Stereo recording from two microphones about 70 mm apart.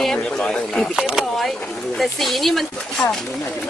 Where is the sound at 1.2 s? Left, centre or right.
Centre.